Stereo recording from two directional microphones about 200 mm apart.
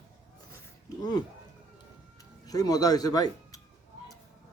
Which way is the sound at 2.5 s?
20° left (ahead or behind).